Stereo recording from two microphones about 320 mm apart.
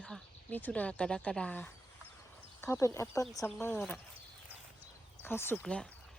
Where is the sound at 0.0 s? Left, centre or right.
Centre.